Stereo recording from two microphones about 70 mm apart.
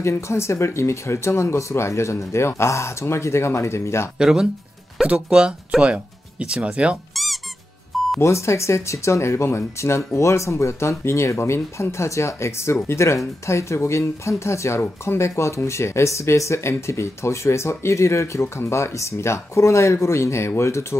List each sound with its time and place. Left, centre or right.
0.0 s speech: left
4.2 s speech: centre
8.2 s speech: left